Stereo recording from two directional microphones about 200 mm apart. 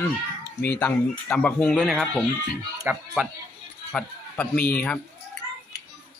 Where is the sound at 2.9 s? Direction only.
10° right (ahead or behind).